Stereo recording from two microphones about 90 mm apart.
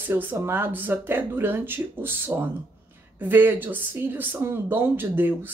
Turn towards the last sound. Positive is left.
turn(degrees=-20)  # may be behind; listen again after turning